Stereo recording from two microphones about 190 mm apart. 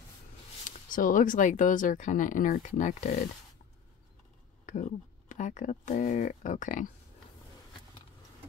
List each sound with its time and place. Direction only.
0.7 s speech: 45° left (ahead or behind)
4.6 s speech: 40° left (ahead or behind)